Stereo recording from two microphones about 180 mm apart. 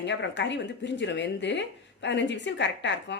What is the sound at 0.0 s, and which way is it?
Speech, 75° left (ahead or behind).